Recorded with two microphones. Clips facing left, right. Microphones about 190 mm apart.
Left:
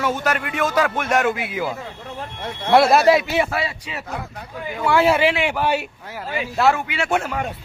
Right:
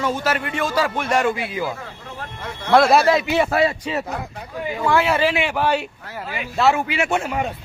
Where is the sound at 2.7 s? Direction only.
5° left (ahead or behind).